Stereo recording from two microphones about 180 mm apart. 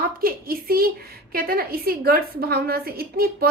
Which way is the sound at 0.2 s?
55° right (ahead or behind).